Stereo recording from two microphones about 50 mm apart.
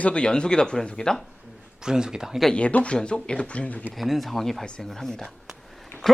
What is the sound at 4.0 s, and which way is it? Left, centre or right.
Speech, centre.